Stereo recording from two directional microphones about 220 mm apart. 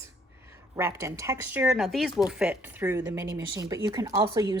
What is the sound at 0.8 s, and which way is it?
Speech, 10° right (ahead or behind).